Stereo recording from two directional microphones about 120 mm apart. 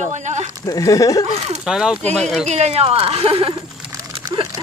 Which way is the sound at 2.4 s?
65° right (ahead or behind).